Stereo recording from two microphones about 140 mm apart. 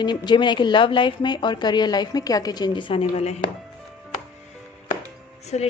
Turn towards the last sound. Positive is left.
turn(degrees=55)  # may be behind; listen again after turning